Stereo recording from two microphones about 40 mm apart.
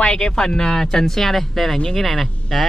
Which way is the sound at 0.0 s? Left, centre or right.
Centre.